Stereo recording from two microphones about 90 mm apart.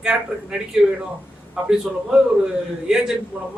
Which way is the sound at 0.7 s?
10° right (ahead or behind).